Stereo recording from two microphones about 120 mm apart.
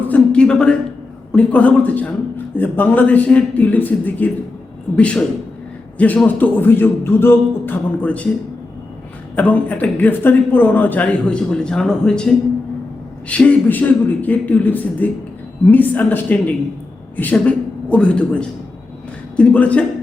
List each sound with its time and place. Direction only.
0.1 s a sound: 5° left (ahead or behind)
1.3 s a man's voice: 10° left (ahead or behind)
9.3 s a man's voice: 10° left (ahead or behind)